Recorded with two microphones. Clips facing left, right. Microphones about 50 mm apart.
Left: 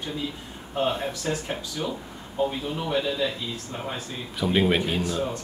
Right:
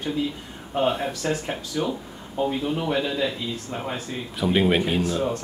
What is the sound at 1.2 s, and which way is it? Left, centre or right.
A man's voice, right.